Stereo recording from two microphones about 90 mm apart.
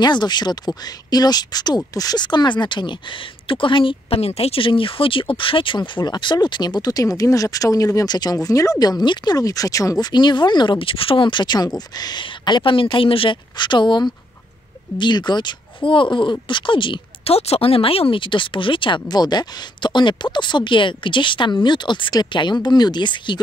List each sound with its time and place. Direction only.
0.0 s speech: 55° left (ahead or behind); by 5.8 s 70° left (ahead or behind)
5.8 s speech: 55° left (ahead or behind)